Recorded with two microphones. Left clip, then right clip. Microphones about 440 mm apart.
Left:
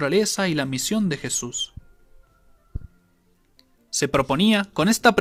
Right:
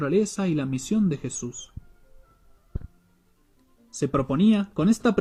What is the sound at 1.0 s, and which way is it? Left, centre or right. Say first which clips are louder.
Speech: left 1 dB; left.